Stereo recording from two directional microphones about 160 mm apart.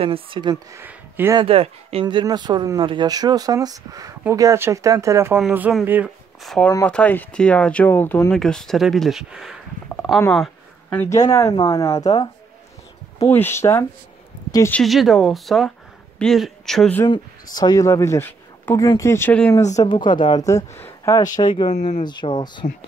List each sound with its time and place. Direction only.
0.0 s speech: 35° right (ahead or behind)
0.7 s speech: 15° right (ahead or behind)
1.3 s speech: 35° right (ahead or behind); by 5.4 s 15° right (ahead or behind)
5.4 s speech: 5° right (ahead or behind)
6.4 s speech: centre (ahead or behind)
9.8 s a sound: 5° left (ahead or behind)
11.0 s speech: 20° left (ahead or behind)
13.3 s speech: 15° left (ahead or behind)
14.7 s speech: centre (ahead or behind)
17.1 s speech: 25° left (ahead or behind); by 19.5 s 10° left (ahead or behind)
19.7 s speech: 25° left (ahead or behind)